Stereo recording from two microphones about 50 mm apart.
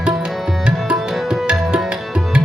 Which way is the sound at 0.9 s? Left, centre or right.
Centre.